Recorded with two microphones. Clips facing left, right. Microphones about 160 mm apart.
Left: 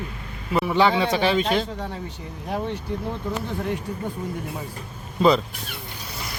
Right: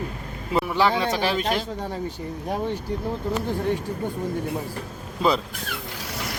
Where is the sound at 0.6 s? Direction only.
Centre (ahead or behind).